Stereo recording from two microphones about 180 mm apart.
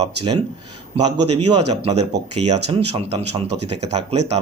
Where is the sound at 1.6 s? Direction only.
35° right (ahead or behind).